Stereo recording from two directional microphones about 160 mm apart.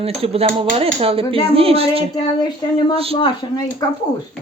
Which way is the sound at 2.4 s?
30° left (ahead or behind).